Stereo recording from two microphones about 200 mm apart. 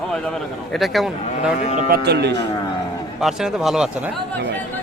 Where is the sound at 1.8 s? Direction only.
45° right (ahead or behind).